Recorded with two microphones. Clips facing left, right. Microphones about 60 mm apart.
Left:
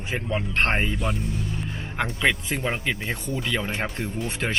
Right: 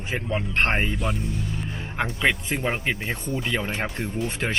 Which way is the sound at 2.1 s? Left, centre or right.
Centre.